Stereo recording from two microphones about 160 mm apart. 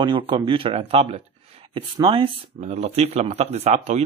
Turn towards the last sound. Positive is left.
turn(degrees=-45)  # may be behind; listen again after turning